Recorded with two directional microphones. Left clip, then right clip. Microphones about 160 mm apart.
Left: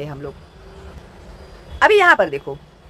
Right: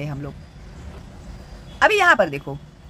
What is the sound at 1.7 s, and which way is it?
Speech, 20° right (ahead or behind).